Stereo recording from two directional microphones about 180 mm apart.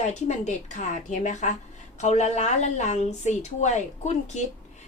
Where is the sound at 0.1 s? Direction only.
40° left (ahead or behind).